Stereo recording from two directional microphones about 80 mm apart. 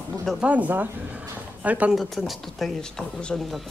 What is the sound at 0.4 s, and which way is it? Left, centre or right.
Speech, centre.